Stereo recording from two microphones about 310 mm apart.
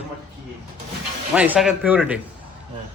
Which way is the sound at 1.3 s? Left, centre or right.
Centre.